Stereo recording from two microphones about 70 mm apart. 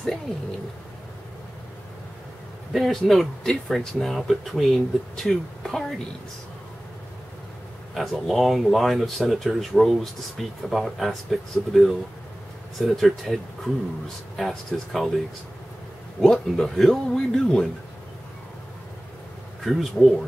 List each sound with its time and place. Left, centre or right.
2.7 s speech: centre
7.9 s speech: centre
16.2 s speech: centre
19.6 s speech: centre